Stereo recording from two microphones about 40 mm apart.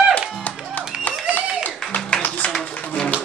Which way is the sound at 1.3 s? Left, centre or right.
Left.